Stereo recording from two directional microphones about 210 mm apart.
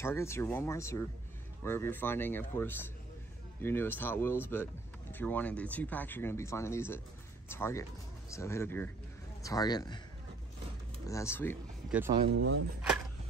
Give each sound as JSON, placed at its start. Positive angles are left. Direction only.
{"t": 0.0, "sound": "a man's voice", "side_deg": 10}
{"t": 11.1, "sound": "speech", "side_deg": 15}
{"t": 12.3, "sound": "speech", "side_deg": -75}